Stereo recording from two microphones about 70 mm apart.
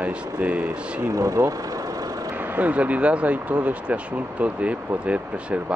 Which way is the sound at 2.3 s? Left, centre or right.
Right.